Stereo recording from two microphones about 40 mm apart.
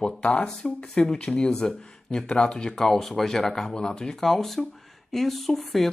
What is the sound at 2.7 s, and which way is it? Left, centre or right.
Speech, centre.